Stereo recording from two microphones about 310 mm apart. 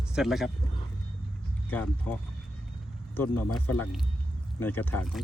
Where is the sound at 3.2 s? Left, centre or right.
Left.